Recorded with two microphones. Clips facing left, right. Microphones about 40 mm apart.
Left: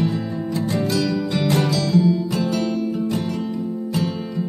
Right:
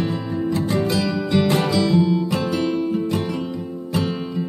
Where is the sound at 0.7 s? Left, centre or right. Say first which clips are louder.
Even; right.